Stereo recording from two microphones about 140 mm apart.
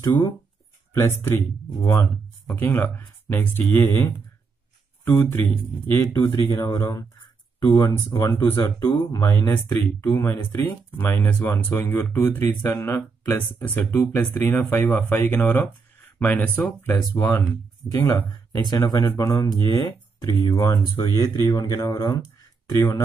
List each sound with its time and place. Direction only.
1.0 s speech: 15° left (ahead or behind)
2.5 s speech: 15° left (ahead or behind)
18.1 s speech: 25° left (ahead or behind)